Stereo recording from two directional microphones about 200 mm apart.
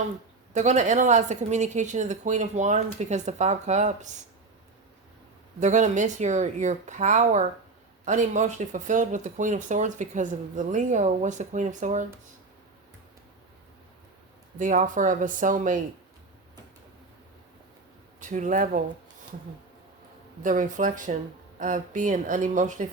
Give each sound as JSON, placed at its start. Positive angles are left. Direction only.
{"t": 0.5, "sound": "speech", "side_deg": -35}
{"t": 5.5, "sound": "speech", "side_deg": -35}
{"t": 14.6, "sound": "speech", "side_deg": -40}
{"t": 18.2, "sound": "speech", "side_deg": -40}
{"t": 20.4, "sound": "speech", "side_deg": -40}